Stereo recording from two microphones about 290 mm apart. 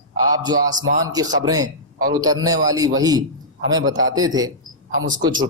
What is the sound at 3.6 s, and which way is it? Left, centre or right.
Speech, right.